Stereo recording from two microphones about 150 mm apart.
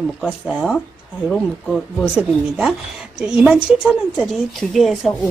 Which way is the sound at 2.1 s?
5° right (ahead or behind).